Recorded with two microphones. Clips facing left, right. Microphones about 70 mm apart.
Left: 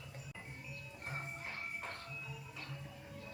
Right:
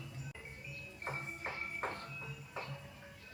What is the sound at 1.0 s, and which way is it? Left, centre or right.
Music, right.